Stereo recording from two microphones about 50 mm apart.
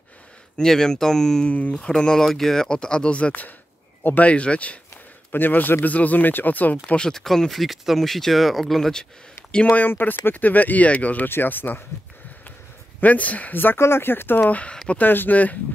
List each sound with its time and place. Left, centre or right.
0.6 s speech: centre
1.5 s speech: left
1.9 s speech: centre
4.0 s speech: left
4.3 s speech: left
5.3 s speech: left
7.0 s speech: centre
9.7 s speech: left
11.2 s speech: left
13.0 s speech: left
13.7 s speech: left
14.5 s speech: left
15.0 s speech: left